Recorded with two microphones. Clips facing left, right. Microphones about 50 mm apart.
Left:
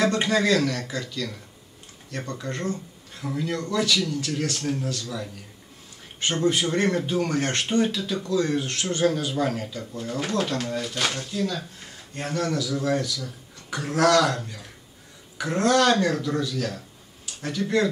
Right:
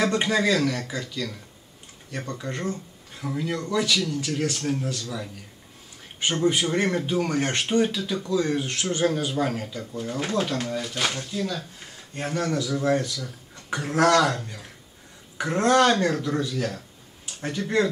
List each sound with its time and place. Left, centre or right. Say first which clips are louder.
0.0 s a man's voice: left 1 dB; centre
6.2 s a man's voice: even; centre
12.8 s speech: right 2 dB; right